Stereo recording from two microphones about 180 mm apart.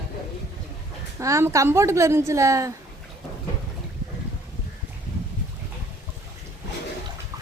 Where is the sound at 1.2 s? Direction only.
15° right (ahead or behind).